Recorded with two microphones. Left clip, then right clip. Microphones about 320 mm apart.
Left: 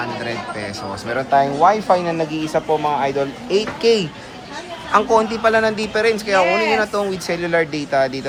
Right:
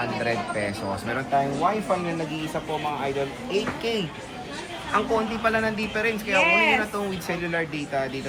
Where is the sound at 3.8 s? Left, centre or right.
Left.